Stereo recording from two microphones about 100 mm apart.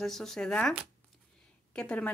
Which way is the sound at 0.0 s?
5° left (ahead or behind).